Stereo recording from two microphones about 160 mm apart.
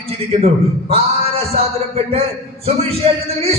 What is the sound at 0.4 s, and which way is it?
Music, 40° right (ahead or behind).